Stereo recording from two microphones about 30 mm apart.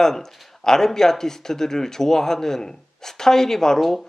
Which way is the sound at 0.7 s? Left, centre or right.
Centre.